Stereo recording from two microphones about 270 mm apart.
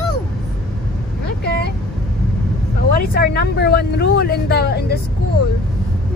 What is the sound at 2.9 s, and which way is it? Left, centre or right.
Speech, left.